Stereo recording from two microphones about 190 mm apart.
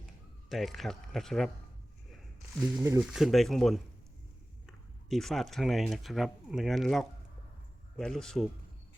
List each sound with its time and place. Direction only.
0.0 s a sound: centre (ahead or behind)
2.6 s speech: 15° right (ahead or behind)
3.0 s speech: 5° right (ahead or behind)